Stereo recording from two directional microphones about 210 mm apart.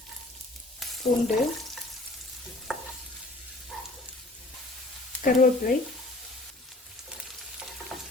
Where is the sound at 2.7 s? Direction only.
5° right (ahead or behind).